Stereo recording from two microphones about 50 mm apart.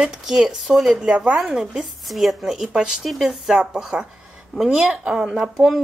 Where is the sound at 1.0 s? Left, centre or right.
Centre.